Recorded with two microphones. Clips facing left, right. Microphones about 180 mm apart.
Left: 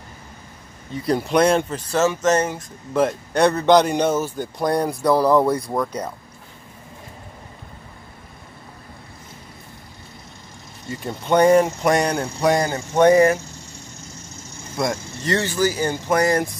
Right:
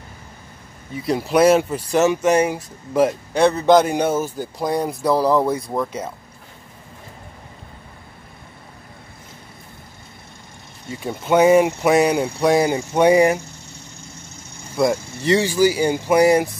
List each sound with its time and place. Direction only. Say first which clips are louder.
0.9 s speech: right 1 dB; centre (ahead or behind)
10.9 s speech: right 1 dB; 5° right (ahead or behind)
12.6 s speech: even; 10° right (ahead or behind)
14.8 s speech: right 5 dB; 5° right (ahead or behind)